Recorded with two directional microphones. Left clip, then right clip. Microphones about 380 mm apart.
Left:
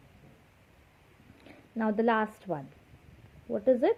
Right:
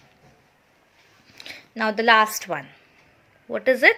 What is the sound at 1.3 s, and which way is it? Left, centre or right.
Speech, centre.